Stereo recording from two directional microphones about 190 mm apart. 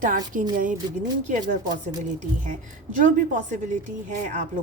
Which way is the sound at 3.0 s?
40° right (ahead or behind).